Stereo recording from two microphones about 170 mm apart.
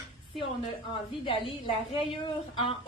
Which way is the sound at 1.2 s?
30° left (ahead or behind).